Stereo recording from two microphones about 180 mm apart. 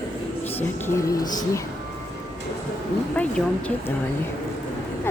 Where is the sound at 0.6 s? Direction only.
15° left (ahead or behind).